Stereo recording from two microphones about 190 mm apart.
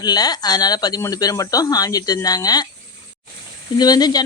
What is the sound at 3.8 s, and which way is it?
Speech, 20° left (ahead or behind).